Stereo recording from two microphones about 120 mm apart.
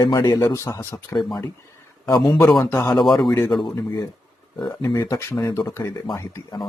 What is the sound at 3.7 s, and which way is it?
Speech, 25° left (ahead or behind).